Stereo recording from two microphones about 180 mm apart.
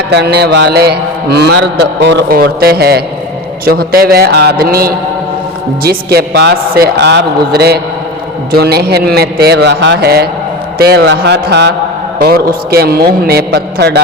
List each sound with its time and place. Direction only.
0.3 s a man's voice: 70° right (ahead or behind)
10.8 s a sound: 60° right (ahead or behind)
12.2 s a man's voice: 55° right (ahead or behind)